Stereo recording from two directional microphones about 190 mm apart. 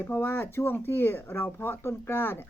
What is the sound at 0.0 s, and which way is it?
Speech, 10° left (ahead or behind).